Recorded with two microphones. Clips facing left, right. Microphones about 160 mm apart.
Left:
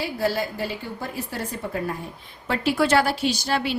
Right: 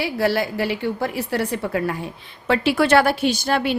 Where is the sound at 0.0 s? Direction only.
75° right (ahead or behind).